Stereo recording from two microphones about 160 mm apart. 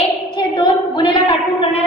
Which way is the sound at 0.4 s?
30° left (ahead or behind).